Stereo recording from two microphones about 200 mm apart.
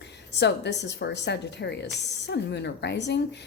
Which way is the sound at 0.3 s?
60° left (ahead or behind).